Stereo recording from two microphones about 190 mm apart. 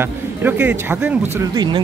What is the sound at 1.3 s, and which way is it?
Speech, 20° right (ahead or behind).